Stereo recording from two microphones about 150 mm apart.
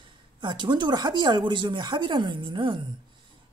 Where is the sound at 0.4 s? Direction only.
30° right (ahead or behind).